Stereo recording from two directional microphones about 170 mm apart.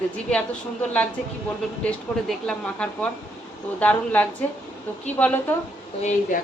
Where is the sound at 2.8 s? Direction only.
5° left (ahead or behind).